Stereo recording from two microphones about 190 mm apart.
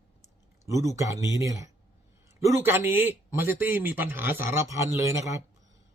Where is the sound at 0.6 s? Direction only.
15° right (ahead or behind).